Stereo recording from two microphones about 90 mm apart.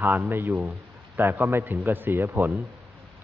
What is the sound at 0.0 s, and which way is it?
A man's voice, 20° right (ahead or behind).